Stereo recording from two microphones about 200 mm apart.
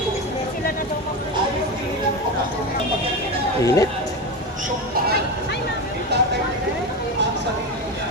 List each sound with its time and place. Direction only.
3.6 s speech: 15° left (ahead or behind)
6.1 s vehicle: 55° right (ahead or behind)